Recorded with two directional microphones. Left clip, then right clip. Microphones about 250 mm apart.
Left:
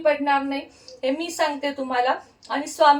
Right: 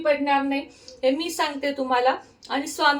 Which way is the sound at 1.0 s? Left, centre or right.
Centre.